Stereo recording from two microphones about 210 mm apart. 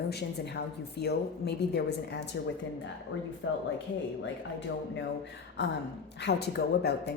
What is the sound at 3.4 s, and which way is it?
Speech, 60° left (ahead or behind).